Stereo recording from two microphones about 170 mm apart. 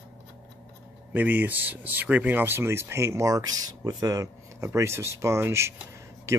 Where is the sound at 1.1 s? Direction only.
10° right (ahead or behind).